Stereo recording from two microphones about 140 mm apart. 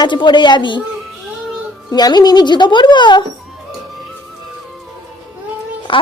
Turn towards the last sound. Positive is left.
turn(degrees=35)  # may be behind; listen again after turning